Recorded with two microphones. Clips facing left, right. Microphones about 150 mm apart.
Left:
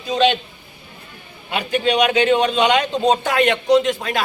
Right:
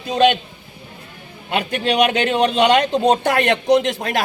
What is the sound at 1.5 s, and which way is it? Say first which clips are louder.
A man's voice: left 1 dB; 55° right (ahead or behind).